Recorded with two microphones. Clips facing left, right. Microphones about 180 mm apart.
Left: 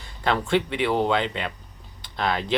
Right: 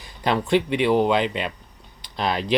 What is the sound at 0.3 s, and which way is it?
Speech, 20° right (ahead or behind).